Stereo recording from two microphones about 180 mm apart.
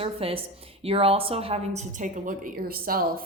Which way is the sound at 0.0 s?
30° right (ahead or behind).